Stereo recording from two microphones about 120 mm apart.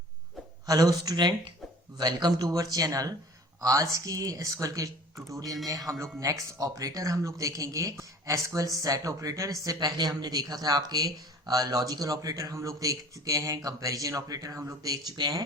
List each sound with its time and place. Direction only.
0.6 s speech: 30° right (ahead or behind)